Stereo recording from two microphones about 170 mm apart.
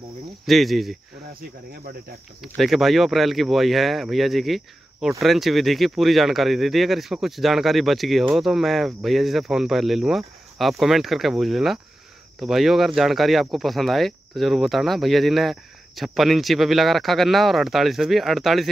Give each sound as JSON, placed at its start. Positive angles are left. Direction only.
{"t": 0.5, "sound": "speech", "side_deg": 0}
{"t": 1.3, "sound": "speech", "side_deg": -65}
{"t": 2.4, "sound": "speech", "side_deg": 0}